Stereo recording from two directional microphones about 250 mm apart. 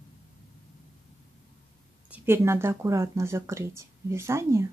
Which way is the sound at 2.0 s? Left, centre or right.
Centre.